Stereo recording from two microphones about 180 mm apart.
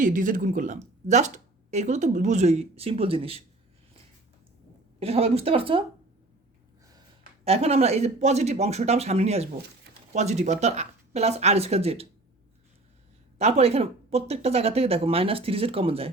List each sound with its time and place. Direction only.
0.0 s speech: 45° right (ahead or behind)
4.9 s speech: 35° right (ahead or behind)
7.4 s speech: 35° right (ahead or behind)
13.4 s speech: 35° right (ahead or behind)